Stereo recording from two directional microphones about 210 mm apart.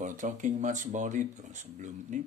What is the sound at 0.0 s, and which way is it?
Speech, 40° right (ahead or behind).